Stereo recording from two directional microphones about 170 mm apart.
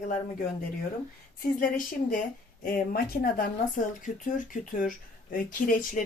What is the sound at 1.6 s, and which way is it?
Speech, 55° left (ahead or behind).